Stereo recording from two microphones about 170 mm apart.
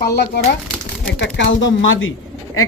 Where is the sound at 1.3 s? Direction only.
90° left.